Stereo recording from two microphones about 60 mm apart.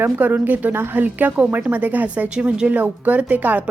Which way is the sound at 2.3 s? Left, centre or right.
Centre.